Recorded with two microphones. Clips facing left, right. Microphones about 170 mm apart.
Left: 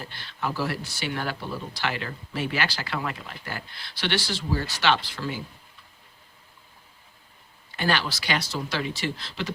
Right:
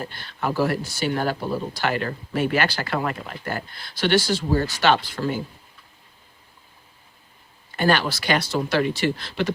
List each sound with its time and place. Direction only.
0.0 s speech: 50° right (ahead or behind)
7.8 s speech: 50° right (ahead or behind)